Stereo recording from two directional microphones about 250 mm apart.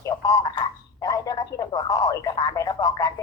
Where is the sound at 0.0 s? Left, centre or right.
Centre.